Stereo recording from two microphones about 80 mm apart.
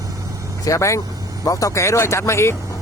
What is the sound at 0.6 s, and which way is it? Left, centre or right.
Speech, left.